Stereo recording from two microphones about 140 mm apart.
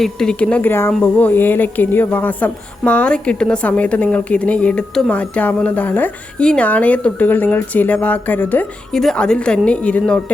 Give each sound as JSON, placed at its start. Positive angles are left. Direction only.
{"t": 0.0, "sound": "speech", "side_deg": 5}